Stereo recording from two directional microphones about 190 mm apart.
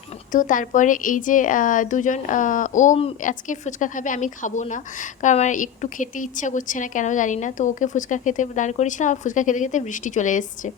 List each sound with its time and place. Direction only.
0.3 s a woman's voice: 45° left (ahead or behind)